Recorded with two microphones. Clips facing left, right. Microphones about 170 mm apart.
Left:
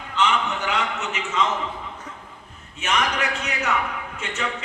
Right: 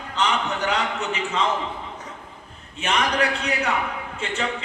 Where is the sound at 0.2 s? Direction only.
35° right (ahead or behind).